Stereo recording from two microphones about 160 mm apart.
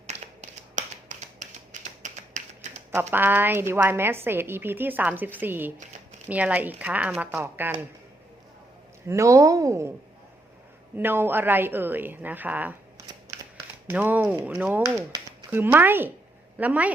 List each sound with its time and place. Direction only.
0.1 s finger snapping: 50° right (ahead or behind)
2.9 s a woman's voice: 15° right (ahead or behind)
9.0 s speech: 20° right (ahead or behind)
10.9 s a woman's voice: 15° right (ahead or behind)
13.8 s a woman's voice: 10° right (ahead or behind)
14.8 s a sound: 25° right (ahead or behind)
15.4 s a woman's voice: 10° right (ahead or behind)